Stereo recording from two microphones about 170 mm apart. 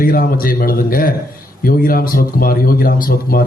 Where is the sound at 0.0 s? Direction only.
60° left (ahead or behind).